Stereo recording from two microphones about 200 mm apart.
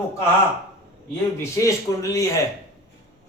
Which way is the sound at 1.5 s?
15° left (ahead or behind).